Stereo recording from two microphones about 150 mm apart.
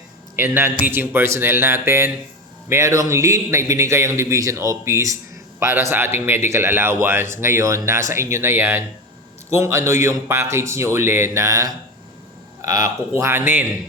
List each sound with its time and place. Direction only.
0.3 s a man's voice: 15° right (ahead or behind)